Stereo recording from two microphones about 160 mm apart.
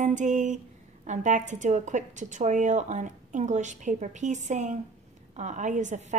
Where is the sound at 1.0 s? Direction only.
50° right (ahead or behind).